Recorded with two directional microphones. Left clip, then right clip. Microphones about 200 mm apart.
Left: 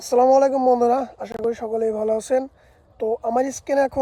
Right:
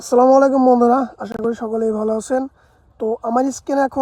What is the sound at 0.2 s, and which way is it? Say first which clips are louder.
Speech: right 4 dB; 20° right (ahead or behind).